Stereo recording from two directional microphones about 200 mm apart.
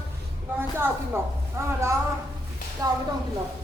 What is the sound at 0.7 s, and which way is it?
Speech, 10° right (ahead or behind).